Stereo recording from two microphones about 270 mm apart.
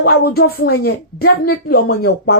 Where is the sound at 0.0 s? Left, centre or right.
Left.